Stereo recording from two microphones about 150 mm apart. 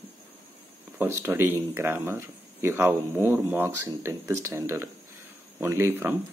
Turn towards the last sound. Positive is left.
turn(degrees=-15)  # may be behind; listen again after turning